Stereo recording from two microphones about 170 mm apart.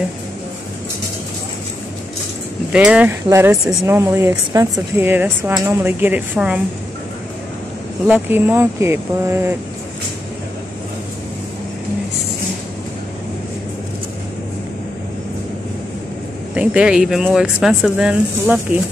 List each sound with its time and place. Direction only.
2.7 s a woman's voice: 5° right (ahead or behind)
8.1 s a woman's voice: 10° right (ahead or behind)
16.5 s speech: 5° right (ahead or behind)